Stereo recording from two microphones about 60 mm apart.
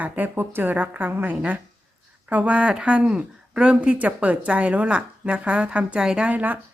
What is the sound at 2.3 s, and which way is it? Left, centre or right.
Speech, right.